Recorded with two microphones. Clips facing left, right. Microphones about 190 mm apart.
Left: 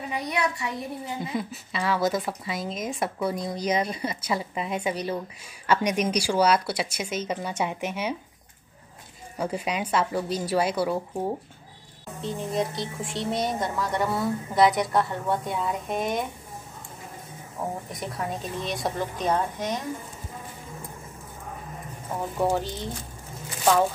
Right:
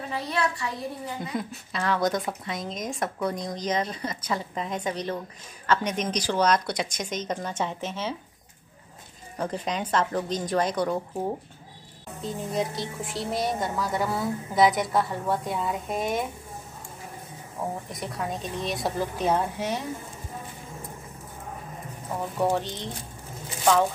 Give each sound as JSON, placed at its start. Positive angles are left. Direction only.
{"t": 0.1, "sound": "a woman's voice", "side_deg": 20}
{"t": 1.3, "sound": "speech", "side_deg": 0}
{"t": 9.4, "sound": "speech", "side_deg": 10}
{"t": 17.6, "sound": "speech", "side_deg": 0}
{"t": 22.4, "sound": "speech", "side_deg": 0}